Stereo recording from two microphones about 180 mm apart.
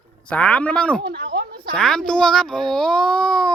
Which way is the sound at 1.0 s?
60° right (ahead or behind).